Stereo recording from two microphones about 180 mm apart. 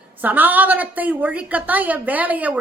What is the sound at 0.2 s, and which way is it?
A woman's voice, 10° right (ahead or behind).